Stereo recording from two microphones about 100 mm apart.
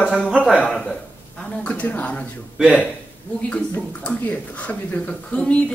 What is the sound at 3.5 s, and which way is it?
Speech, 15° left (ahead or behind).